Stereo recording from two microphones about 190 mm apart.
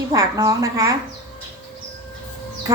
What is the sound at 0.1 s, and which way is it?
Speech, 15° right (ahead or behind).